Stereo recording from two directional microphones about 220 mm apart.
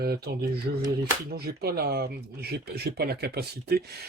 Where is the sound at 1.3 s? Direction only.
45° right (ahead or behind).